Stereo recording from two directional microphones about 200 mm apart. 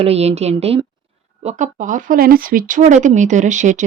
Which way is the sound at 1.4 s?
40° right (ahead or behind).